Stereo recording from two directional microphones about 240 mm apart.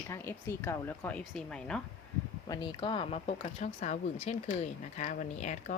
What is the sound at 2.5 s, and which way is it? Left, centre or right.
Speech, centre.